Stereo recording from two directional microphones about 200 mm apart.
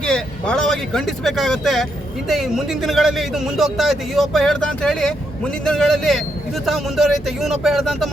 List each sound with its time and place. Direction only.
0.0 s speech: 5° left (ahead or behind)